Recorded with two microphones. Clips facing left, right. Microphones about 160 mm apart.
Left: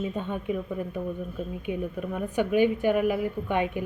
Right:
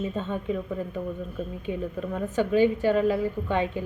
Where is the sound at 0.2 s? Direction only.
15° left (ahead or behind).